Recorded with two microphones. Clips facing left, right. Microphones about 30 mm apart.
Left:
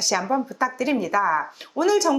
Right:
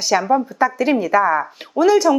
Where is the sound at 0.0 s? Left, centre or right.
Centre.